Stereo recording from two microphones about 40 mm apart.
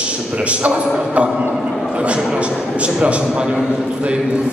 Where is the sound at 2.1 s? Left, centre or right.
Right.